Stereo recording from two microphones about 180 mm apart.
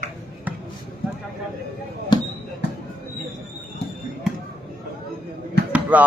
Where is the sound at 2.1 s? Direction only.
25° left (ahead or behind).